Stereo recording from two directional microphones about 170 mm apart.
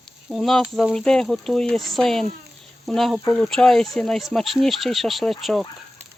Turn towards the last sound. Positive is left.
turn(degrees=0)  # may be behind; listen again after turning